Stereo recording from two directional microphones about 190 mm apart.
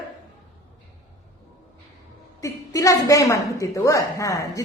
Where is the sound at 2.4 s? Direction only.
15° left (ahead or behind).